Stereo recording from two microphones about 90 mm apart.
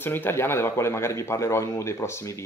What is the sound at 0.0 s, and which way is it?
Speech, 20° left (ahead or behind).